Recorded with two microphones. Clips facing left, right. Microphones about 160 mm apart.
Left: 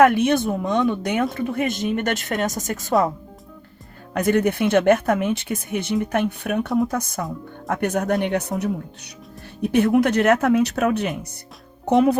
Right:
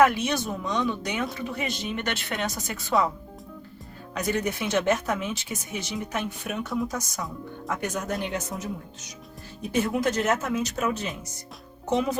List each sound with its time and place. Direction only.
0.0 s speech: 55° left (ahead or behind)
4.1 s speech: 55° left (ahead or behind)